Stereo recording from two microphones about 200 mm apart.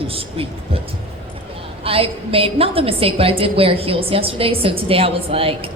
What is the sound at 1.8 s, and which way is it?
A woman's voice, 30° right (ahead or behind).